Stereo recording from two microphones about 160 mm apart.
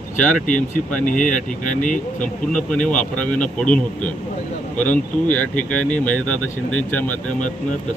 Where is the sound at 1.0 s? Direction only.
55° left (ahead or behind).